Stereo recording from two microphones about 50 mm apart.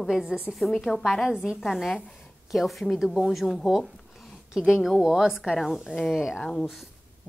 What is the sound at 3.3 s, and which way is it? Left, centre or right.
Speech, centre.